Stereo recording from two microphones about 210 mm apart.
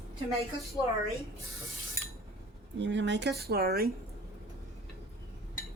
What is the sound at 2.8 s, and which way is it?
Speech, 60° right (ahead or behind).